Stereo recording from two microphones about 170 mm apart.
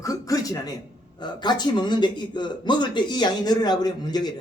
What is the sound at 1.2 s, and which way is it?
A man's voice, 25° left (ahead or behind).